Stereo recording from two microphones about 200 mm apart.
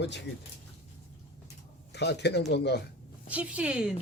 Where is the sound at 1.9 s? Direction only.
55° left (ahead or behind).